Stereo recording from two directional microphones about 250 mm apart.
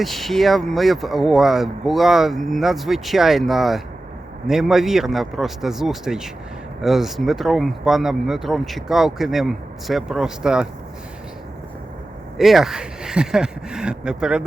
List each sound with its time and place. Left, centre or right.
0.0 s speech: centre
12.4 s speech: centre